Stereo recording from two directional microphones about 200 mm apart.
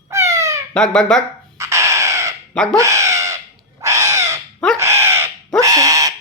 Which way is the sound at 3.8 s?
15° right (ahead or behind).